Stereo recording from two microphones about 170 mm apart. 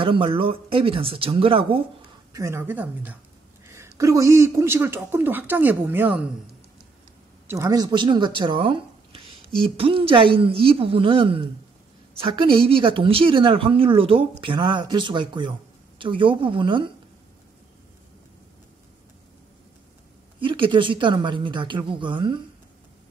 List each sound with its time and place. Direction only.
0.0 s speech: 30° right (ahead or behind)
2.3 s speech: 15° right (ahead or behind)
7.4 s a woman's voice: 20° right (ahead or behind)
20.3 s a woman's voice: 30° right (ahead or behind)